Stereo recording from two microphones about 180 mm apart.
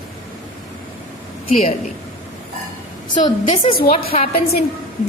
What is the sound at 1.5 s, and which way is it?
Speech, 40° left (ahead or behind).